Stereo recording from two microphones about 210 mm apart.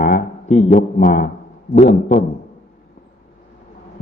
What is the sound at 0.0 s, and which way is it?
A man's voice, 40° left (ahead or behind).